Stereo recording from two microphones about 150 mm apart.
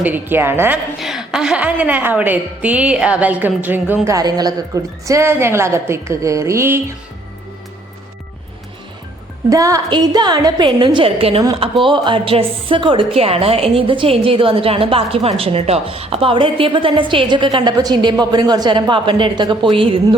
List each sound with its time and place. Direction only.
0.0 s a woman's voice: 10° right (ahead or behind)
0.9 s a woman's voice: centre (ahead or behind); by 6.7 s 20° right (ahead or behind)
9.5 s a woman's voice: 20° right (ahead or behind)